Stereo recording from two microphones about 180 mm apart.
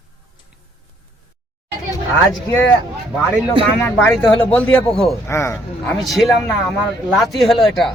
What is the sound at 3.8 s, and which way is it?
Speech, 5° left (ahead or behind).